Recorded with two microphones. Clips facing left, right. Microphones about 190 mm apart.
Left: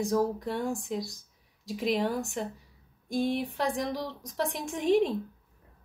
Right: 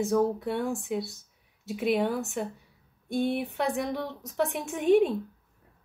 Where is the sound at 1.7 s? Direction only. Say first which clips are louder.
Right 2 dB; 5° right (ahead or behind).